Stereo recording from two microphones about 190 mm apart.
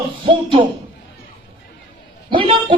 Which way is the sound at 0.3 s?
25° right (ahead or behind).